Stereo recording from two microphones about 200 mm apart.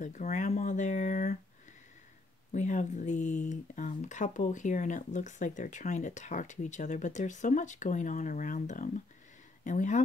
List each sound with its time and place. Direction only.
0.0 s speech: 40° left (ahead or behind)
2.5 s speech: 35° left (ahead or behind)